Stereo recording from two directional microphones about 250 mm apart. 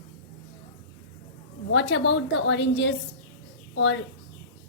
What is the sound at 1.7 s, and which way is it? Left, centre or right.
A woman's voice, left.